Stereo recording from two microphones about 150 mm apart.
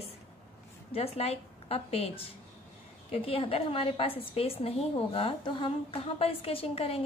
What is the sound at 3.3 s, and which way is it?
A woman's voice, 40° left (ahead or behind).